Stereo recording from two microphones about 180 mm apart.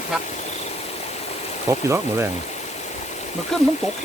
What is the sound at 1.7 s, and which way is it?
Speech, 15° right (ahead or behind).